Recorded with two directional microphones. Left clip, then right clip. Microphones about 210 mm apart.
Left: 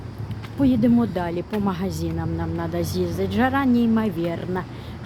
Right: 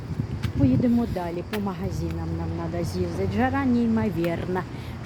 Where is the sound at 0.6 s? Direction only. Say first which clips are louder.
Left 4 dB; 25° left (ahead or behind).